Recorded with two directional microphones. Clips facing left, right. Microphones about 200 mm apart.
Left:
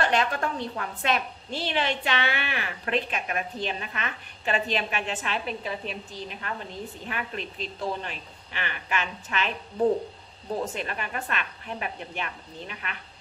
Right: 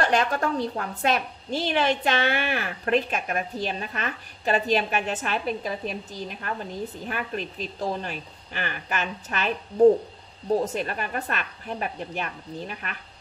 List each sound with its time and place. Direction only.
0.0 s a woman's voice: 40° right (ahead or behind)
7.1 s a woman's voice: 40° right (ahead or behind)
10.6 s a woman's voice: 40° right (ahead or behind)